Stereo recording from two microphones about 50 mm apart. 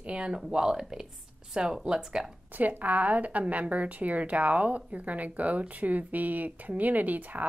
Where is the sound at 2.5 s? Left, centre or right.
Right.